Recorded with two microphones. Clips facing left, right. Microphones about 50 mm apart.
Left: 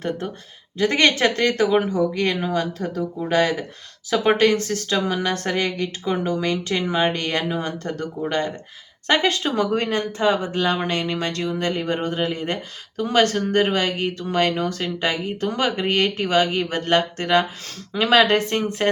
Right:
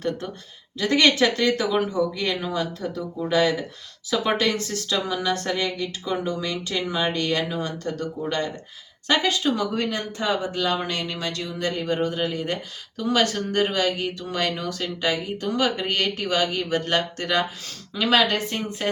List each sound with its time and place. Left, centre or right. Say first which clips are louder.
0.8 s speech: left 1 dB; left
8.2 s speech: left 3 dB; left
9.0 s speech: left 2 dB; left
18.3 s speech: left 6 dB; left